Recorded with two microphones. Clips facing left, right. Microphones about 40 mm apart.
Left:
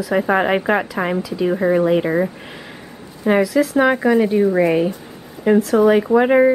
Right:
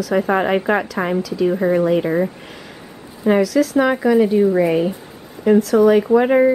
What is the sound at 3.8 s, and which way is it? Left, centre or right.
Speech, centre.